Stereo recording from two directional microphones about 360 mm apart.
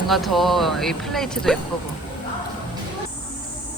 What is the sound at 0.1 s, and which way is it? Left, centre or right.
Speech, centre.